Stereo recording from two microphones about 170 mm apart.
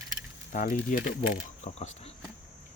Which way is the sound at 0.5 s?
50° left (ahead or behind).